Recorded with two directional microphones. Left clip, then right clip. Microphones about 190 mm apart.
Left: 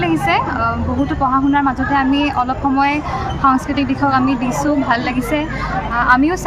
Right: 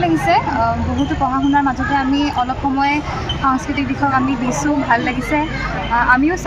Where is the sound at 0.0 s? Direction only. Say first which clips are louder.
Right 1 dB; 25° left (ahead or behind).